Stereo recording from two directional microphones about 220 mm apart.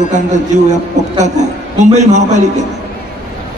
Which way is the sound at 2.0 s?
30° right (ahead or behind).